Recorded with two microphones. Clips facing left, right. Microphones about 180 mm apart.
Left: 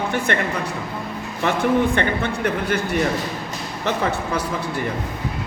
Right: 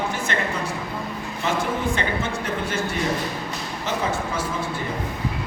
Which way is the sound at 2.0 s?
65° left (ahead or behind).